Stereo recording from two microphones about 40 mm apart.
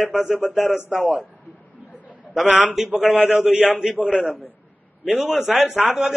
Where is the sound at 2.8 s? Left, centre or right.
Centre.